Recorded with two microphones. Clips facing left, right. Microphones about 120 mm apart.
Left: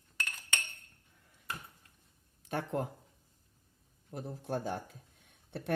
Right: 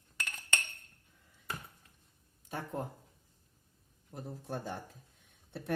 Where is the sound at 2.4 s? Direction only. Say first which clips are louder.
Left 4 dB; 75° left (ahead or behind).